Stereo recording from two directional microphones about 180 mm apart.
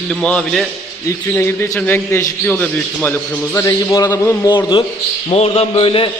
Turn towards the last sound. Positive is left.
turn(degrees=30)  # may be behind; listen again after turning